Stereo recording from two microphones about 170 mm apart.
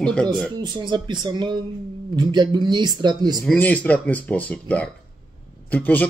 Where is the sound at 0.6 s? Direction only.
25° right (ahead or behind).